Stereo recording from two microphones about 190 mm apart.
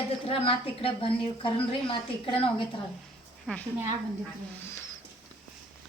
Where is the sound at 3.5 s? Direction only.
5° left (ahead or behind).